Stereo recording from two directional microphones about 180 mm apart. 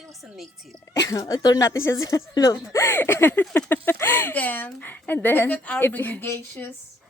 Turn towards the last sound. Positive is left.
turn(degrees=10)  # may be behind; listen again after turning